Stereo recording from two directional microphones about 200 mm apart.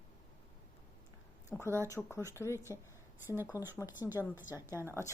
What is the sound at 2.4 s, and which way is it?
Speech, 15° left (ahead or behind).